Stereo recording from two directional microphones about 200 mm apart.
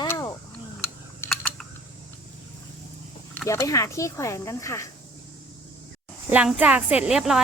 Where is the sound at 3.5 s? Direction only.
15° left (ahead or behind).